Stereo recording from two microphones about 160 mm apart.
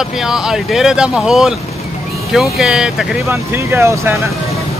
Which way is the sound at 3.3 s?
15° right (ahead or behind).